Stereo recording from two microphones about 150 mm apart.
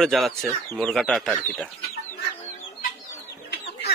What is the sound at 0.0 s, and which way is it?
Speech, centre (ahead or behind).